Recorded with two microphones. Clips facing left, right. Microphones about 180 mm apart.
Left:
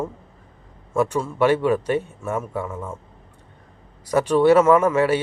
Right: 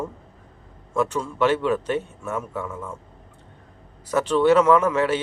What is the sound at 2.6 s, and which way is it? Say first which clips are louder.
Speech: left 2 dB; 30° left (ahead or behind).